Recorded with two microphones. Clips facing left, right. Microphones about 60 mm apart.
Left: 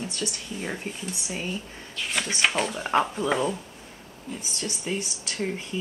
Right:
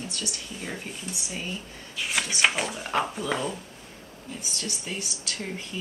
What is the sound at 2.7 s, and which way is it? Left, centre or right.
Speech, centre.